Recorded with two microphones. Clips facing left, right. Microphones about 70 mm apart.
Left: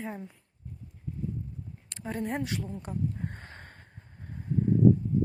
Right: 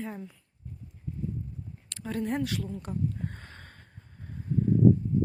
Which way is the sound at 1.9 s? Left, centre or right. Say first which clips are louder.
Right 2 dB; left.